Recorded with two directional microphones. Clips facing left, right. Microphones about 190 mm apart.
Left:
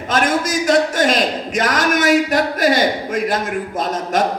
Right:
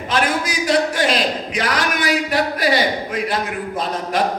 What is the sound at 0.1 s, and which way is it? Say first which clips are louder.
A man's voice: left 3 dB; 45° left (ahead or behind).